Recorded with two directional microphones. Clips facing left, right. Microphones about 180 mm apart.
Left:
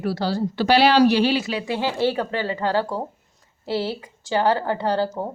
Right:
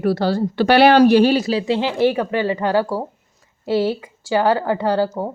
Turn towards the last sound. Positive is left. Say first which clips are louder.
# right 4 dB
turn(degrees=-15)  # may be behind; listen again after turning